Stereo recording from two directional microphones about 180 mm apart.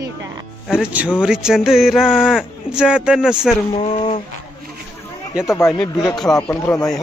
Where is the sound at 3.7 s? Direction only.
35° left (ahead or behind).